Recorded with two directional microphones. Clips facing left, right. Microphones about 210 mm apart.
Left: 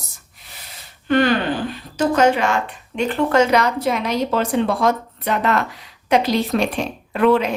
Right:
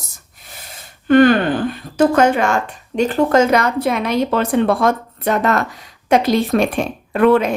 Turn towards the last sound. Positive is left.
turn(degrees=-50)  # may be behind; listen again after turning